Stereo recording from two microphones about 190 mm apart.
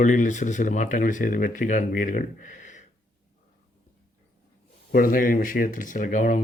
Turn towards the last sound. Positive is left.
turn(degrees=40)  # may be behind; listen again after turning